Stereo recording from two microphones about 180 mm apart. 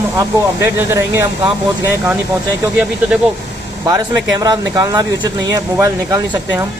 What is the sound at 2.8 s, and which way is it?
Speech, 5° right (ahead or behind).